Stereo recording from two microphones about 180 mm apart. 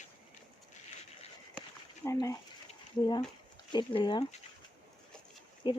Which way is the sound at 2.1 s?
20° left (ahead or behind).